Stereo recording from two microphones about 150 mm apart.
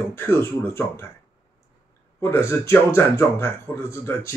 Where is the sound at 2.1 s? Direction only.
20° left (ahead or behind).